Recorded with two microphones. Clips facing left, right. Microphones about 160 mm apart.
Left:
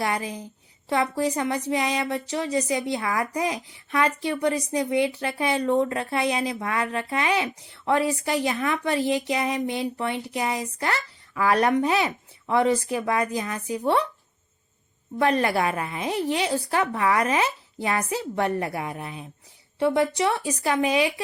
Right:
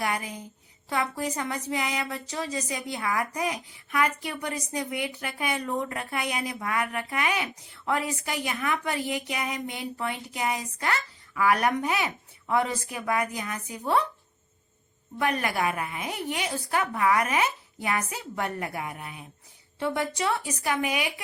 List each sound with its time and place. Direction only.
0.0 s speech: 25° left (ahead or behind)
15.2 s speech: 30° left (ahead or behind)